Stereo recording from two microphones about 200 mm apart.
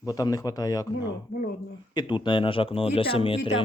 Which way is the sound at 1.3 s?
45° left (ahead or behind).